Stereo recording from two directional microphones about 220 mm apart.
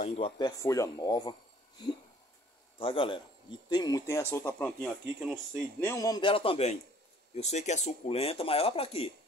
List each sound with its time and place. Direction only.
0.0 s speech: 25° left (ahead or behind)
2.8 s speech: 25° left (ahead or behind)
4.8 s speech: centre (ahead or behind)
5.9 s speech: 15° left (ahead or behind)